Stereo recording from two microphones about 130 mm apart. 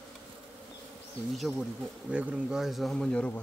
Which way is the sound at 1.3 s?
Centre (ahead or behind).